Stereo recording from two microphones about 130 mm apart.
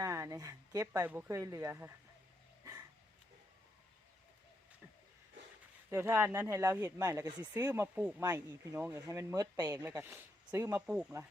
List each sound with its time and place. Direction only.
0.0 s speech: 20° right (ahead or behind)
5.9 s speech: 15° right (ahead or behind)
8.2 s speech: 25° right (ahead or behind)
9.8 s speech: 15° right (ahead or behind)
10.8 s speech: 5° right (ahead or behind)